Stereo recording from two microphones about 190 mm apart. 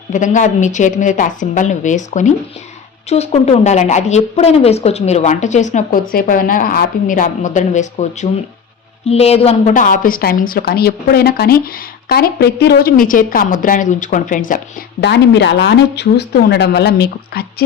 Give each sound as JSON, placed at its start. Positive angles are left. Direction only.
{"t": 0.1, "sound": "a woman's voice", "side_deg": 40}
{"t": 15.0, "sound": "speech", "side_deg": 65}